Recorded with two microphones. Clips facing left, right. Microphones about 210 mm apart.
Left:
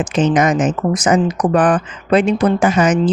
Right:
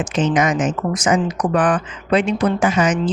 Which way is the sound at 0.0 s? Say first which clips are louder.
Left 3 dB; 40° left (ahead or behind).